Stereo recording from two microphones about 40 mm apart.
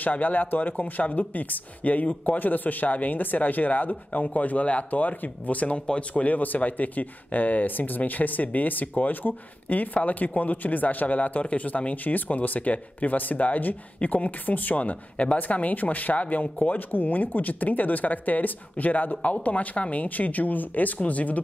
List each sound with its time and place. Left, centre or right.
0.0 s speech: left